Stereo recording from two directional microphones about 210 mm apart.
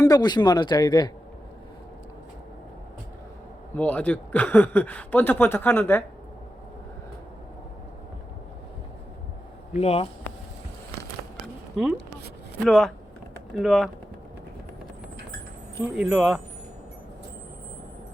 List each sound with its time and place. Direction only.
0.0 s speech: 20° left (ahead or behind)
3.8 s speech: 5° left (ahead or behind)
9.7 s speech: 30° left (ahead or behind)
11.8 s speech: centre (ahead or behind)
15.8 s speech: 5° right (ahead or behind)